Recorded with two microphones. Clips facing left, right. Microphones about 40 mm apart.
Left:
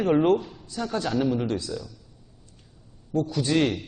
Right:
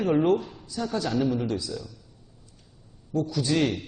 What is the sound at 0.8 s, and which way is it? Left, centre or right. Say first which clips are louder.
A man's voice: left 1 dB; left.